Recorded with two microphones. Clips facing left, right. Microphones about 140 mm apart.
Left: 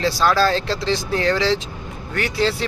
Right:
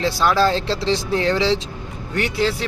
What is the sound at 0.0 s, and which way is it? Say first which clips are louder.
Speech: even; 20° right (ahead or behind).